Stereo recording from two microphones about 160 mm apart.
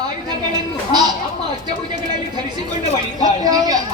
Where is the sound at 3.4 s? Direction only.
25° right (ahead or behind).